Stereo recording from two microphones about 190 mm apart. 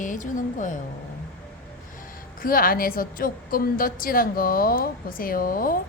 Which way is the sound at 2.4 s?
50° left (ahead or behind).